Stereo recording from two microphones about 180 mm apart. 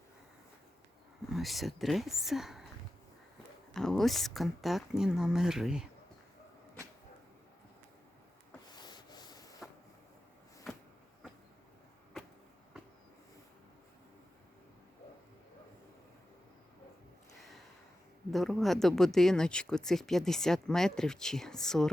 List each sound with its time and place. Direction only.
1.3 s speech: centre (ahead or behind)
3.8 s speech: centre (ahead or behind)
8.7 s rub: 25° left (ahead or behind)
18.3 s speech: centre (ahead or behind)